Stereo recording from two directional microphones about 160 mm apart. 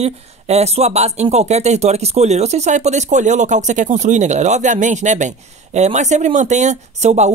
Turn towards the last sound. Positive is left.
turn(degrees=-45)  # may be behind; listen again after turning